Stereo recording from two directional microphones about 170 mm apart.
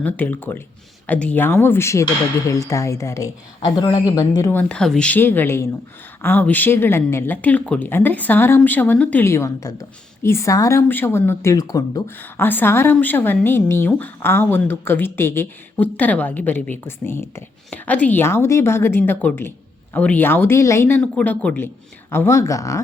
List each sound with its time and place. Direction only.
0.0 s speech: 10° left (ahead or behind)
4.7 s speech: 5° left (ahead or behind)